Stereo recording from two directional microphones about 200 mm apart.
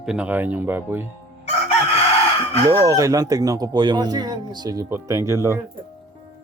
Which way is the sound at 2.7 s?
20° right (ahead or behind).